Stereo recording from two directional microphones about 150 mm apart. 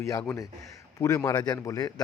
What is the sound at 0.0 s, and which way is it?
A man's voice, 20° left (ahead or behind).